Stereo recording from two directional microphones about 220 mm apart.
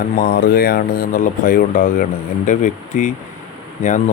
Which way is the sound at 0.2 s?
40° left (ahead or behind).